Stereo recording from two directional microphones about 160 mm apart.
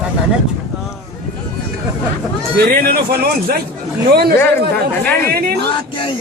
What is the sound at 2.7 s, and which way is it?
Speech, 70° right (ahead or behind).